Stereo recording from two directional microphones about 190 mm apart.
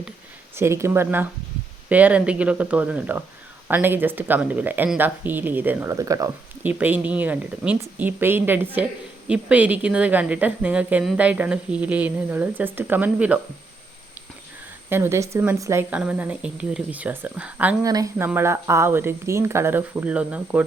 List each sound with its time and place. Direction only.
0.5 s speech: 15° right (ahead or behind)
14.8 s speech: 10° right (ahead or behind)
17.8 s speech: 20° right (ahead or behind)